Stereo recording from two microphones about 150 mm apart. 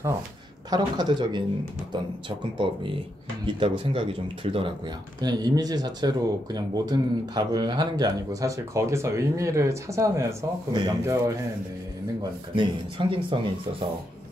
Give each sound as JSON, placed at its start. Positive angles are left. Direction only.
{"t": 0.7, "sound": "speech", "side_deg": -30}